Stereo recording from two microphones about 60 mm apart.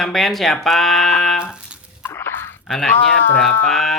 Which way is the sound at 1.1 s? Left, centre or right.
Centre.